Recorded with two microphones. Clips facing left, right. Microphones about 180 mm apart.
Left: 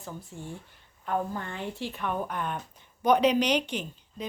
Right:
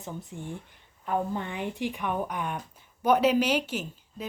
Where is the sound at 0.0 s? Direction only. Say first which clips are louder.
Right 2 dB; 20° right (ahead or behind).